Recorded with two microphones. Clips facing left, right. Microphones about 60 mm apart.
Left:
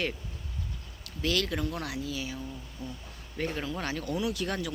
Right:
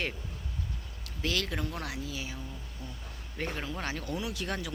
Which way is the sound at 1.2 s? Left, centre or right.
Right.